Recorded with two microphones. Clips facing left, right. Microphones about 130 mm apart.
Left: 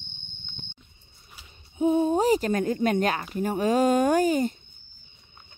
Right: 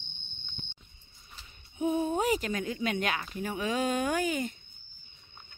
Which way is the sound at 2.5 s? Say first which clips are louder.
Left 8 dB; 45° left (ahead or behind).